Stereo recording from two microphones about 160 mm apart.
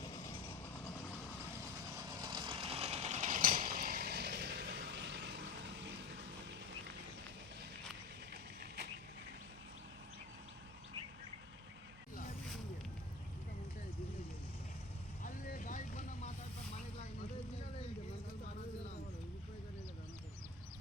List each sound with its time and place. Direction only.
2.0 s vehicle: 25° right (ahead or behind); by 6.6 s 90° right
8.3 s vehicle: 90° right
15.2 s vehicle: 55° left (ahead or behind)